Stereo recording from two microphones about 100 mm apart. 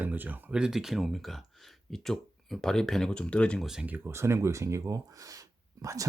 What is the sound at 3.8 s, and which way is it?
Speech, 20° right (ahead or behind).